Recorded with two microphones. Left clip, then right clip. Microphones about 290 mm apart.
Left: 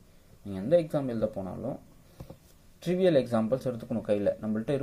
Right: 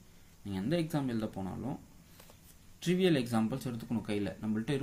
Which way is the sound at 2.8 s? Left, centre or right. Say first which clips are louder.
Left 6 dB; centre.